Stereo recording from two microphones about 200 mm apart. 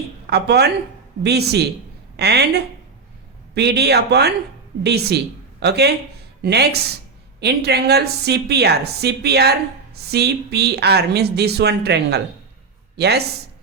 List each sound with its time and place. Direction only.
0.3 s a woman's voice: 55° right (ahead or behind)